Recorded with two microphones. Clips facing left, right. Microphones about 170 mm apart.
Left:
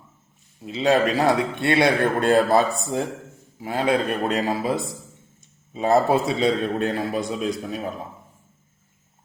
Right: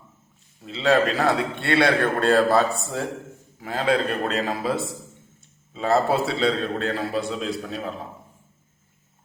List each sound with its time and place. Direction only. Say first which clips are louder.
0.6 s a man's voice: left 1 dB; 15° left (ahead or behind)